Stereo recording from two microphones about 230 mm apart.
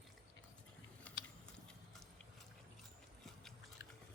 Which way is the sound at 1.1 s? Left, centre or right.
Centre.